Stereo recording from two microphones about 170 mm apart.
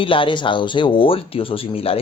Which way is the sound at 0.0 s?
30° left (ahead or behind).